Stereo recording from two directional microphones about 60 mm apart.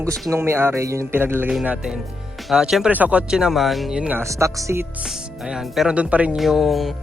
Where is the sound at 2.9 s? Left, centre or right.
Right.